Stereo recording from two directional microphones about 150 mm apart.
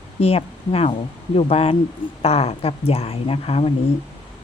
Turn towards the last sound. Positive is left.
turn(degrees=40)  # may be behind; listen again after turning